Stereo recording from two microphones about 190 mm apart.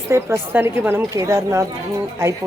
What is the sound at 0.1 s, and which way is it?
Speech, 15° right (ahead or behind).